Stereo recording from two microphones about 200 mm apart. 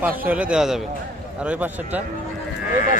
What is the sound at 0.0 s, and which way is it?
A man's voice, 5° right (ahead or behind).